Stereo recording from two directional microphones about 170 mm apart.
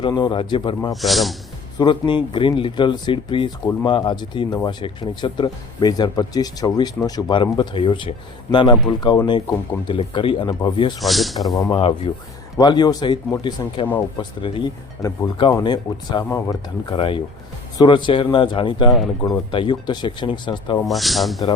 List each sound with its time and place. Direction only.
0.0 s speech: 25° left (ahead or behind)
1.0 s speech: centre (ahead or behind)
1.8 s speech: 25° left (ahead or behind)
11.0 s speech: centre (ahead or behind)
11.7 s speech: 35° left (ahead or behind)
20.8 s speech: centre (ahead or behind)